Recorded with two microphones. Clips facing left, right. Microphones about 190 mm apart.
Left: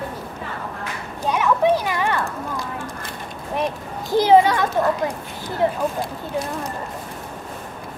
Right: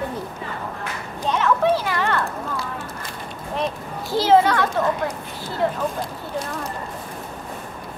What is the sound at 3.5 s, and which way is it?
Speech, 15° left (ahead or behind).